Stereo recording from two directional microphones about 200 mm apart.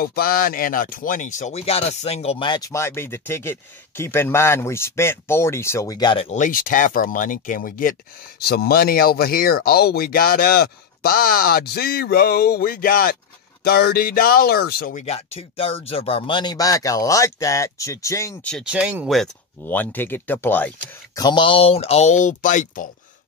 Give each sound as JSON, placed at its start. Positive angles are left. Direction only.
{"t": 0.0, "sound": "speech", "side_deg": 45}
{"t": 6.2, "sound": "speech", "side_deg": 40}
{"t": 15.0, "sound": "speech", "side_deg": 30}
{"t": 18.5, "sound": "speech", "side_deg": -5}